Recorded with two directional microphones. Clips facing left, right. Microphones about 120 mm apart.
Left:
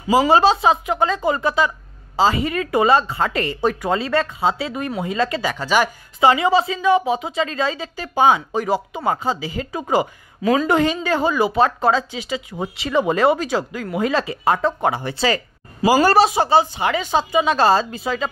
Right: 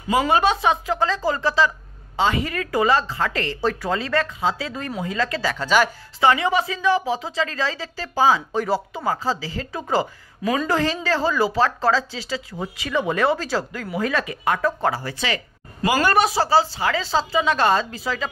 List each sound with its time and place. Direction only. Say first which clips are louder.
0.3 s a woman's voice: left 4 dB; 30° left (ahead or behind)
5.5 s speech: right 2 dB; 10° left (ahead or behind)
6.2 s a woman's voice: left 3 dB; 25° left (ahead or behind)
10.4 s speech: left 5 dB; centre (ahead or behind)
10.7 s a woman's voice: left 3 dB; 20° left (ahead or behind)
15.1 s speech: left 6 dB; 40° left (ahead or behind)
16.3 s a woman's voice: left 2 dB; 20° left (ahead or behind)